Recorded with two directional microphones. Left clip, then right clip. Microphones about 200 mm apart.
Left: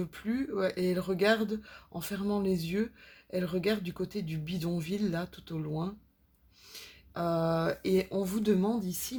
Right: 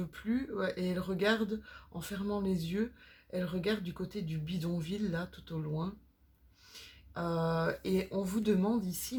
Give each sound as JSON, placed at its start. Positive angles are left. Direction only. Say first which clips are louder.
{"t": 0.0, "sound": "speech", "louder": "left 2 dB", "side_deg": 35}